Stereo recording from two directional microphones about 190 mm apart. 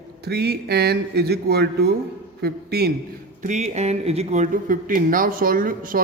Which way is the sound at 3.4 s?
35° right (ahead or behind).